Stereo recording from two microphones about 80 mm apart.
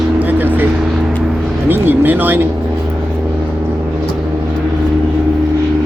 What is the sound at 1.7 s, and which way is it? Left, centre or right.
Speech, right.